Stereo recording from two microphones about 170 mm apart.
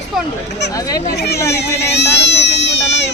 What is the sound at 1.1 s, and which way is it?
Speech, 75° left (ahead or behind).